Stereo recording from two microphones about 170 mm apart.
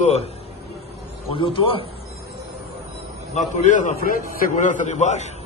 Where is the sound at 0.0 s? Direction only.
40° left (ahead or behind).